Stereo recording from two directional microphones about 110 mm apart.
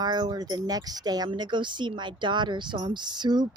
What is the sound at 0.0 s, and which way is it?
Speech, 40° right (ahead or behind).